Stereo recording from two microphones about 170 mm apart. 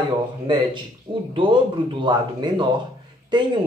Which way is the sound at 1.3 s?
30° right (ahead or behind).